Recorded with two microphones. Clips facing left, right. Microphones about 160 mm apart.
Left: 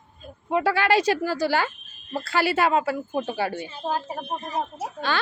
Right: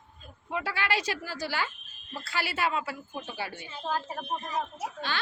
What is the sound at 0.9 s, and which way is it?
Speech, 35° left (ahead or behind).